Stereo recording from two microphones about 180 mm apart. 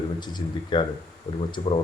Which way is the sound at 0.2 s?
25° left (ahead or behind).